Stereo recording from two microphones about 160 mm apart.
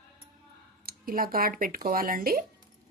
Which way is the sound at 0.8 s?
65° right (ahead or behind).